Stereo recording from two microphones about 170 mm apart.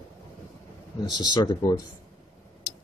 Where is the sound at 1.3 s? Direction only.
25° left (ahead or behind).